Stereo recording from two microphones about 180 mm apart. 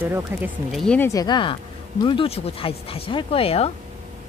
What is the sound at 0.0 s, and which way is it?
Speech, 10° right (ahead or behind).